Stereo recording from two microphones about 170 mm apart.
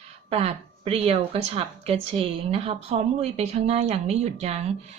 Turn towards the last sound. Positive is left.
turn(degrees=-40)  # may be behind; listen again after turning